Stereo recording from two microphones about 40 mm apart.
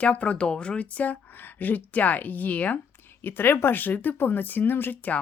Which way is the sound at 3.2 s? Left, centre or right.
Left.